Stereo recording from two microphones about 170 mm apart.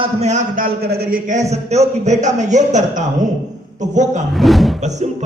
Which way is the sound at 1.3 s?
40° right (ahead or behind).